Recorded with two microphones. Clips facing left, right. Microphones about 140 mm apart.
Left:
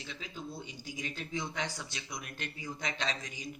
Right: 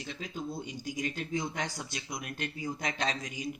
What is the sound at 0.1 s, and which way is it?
Speech, 45° right (ahead or behind).